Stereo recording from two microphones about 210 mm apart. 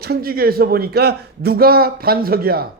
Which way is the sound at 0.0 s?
45° right (ahead or behind).